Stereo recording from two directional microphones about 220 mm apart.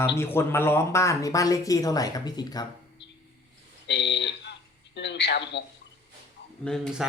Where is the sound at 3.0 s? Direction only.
50° left (ahead or behind).